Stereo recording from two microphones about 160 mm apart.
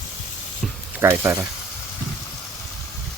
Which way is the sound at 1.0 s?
15° right (ahead or behind).